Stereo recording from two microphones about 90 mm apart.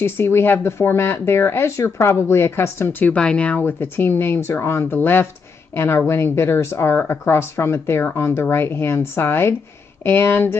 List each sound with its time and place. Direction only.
0.0 s speech: 25° left (ahead or behind)